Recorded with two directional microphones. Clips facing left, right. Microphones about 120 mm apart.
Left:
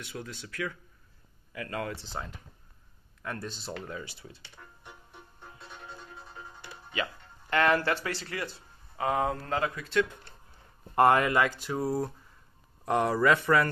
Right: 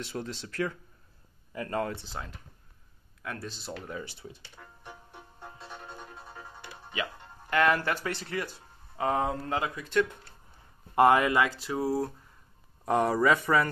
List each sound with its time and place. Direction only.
0.0 s speech: 30° right (ahead or behind)
3.2 s speech: centre (ahead or behind)
3.9 s speech: 20° right (ahead or behind)
6.9 s music: 15° right (ahead or behind)
7.6 s speech: 10° right (ahead or behind)
11.7 s speech: 5° right (ahead or behind)
12.8 s speech: 20° right (ahead or behind)
13.3 s speech: 10° right (ahead or behind)